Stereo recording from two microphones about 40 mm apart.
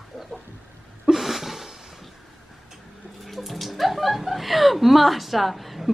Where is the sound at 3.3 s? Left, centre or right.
Centre.